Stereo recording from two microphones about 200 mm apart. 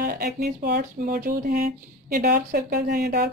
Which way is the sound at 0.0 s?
50° right (ahead or behind).